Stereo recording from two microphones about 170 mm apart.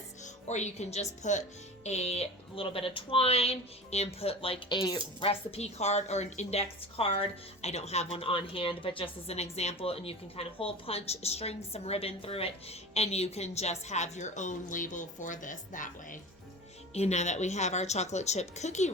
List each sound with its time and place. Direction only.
0.4 s a woman's voice: 40° left (ahead or behind)
16.9 s a woman's voice: 40° left (ahead or behind)